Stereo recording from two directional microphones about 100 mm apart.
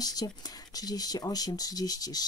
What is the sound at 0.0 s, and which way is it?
Speech, 40° left (ahead or behind).